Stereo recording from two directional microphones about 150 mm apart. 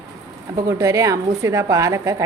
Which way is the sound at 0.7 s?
20° right (ahead or behind).